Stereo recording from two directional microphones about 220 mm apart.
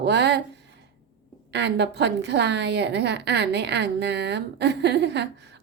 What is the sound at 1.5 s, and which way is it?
A woman's voice, 50° right (ahead or behind).